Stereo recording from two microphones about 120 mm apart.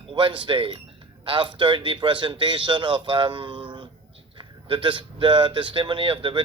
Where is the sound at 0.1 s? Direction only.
45° right (ahead or behind).